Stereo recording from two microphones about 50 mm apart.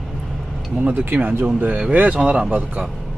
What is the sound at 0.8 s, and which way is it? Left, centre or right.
Speech, right.